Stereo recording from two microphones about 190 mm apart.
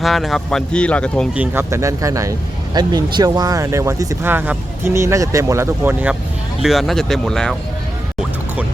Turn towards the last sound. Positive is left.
turn(degrees=5)  # may be behind; listen again after turning